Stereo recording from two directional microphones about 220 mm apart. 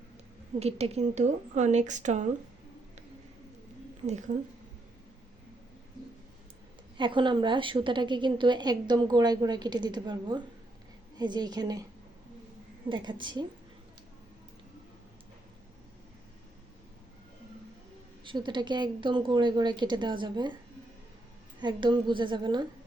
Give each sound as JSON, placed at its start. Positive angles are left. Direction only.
{"t": 0.6, "sound": "speech", "side_deg": -30}
{"t": 6.9, "sound": "a woman's voice", "side_deg": -20}
{"t": 12.9, "sound": "a woman's voice", "side_deg": -20}
{"t": 18.3, "sound": "a woman's voice", "side_deg": -20}
{"t": 21.6, "sound": "a woman's voice", "side_deg": -20}